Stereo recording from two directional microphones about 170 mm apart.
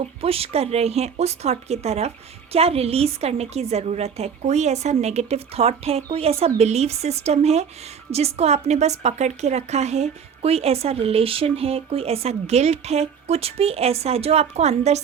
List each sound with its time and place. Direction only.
0.0 s a woman's voice: 35° right (ahead or behind)